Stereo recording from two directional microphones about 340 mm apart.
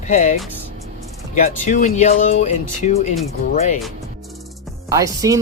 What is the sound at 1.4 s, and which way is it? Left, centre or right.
Speech, left.